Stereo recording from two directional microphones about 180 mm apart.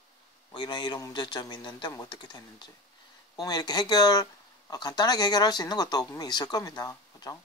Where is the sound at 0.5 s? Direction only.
25° left (ahead or behind).